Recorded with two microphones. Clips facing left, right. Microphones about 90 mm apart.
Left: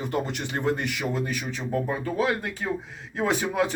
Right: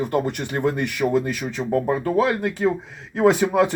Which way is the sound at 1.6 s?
55° right (ahead or behind).